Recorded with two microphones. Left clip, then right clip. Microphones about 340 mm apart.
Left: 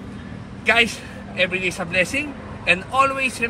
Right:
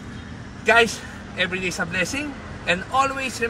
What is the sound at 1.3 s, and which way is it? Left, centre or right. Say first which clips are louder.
A man's voice: left 3 dB; centre.